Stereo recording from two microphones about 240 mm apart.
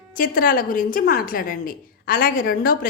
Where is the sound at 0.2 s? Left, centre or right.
Left.